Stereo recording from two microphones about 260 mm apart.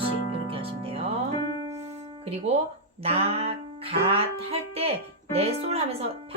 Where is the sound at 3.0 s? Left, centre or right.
Right.